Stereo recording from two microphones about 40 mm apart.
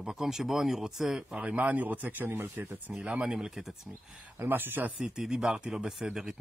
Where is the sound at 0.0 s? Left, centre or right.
Centre.